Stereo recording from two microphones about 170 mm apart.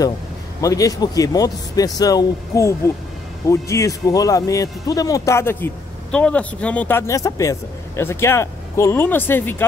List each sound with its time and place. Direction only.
0.6 s speech: 20° left (ahead or behind)